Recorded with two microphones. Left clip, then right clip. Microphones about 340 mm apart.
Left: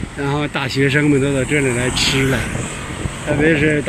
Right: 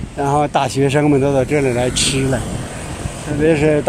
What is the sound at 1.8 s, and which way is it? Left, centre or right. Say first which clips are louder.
Speech: even; centre.